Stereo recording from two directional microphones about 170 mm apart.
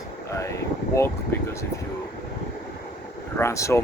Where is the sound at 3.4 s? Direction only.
15° left (ahead or behind).